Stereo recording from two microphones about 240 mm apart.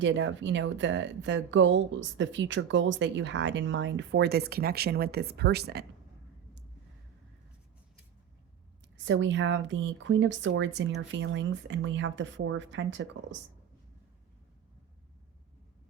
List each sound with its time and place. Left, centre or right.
0.0 s a woman's voice: right
9.0 s a woman's voice: right